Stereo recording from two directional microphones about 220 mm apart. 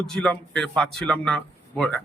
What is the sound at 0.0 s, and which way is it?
A man's voice, 5° left (ahead or behind).